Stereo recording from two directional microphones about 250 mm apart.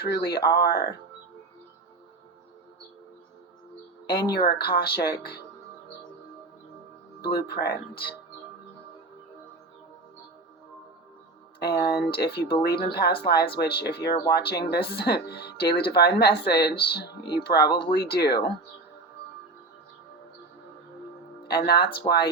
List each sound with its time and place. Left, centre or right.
0.0 s speech: left
4.1 s speech: left
7.2 s speech: left
11.6 s speech: left
21.4 s speech: left
22.0 s speech: centre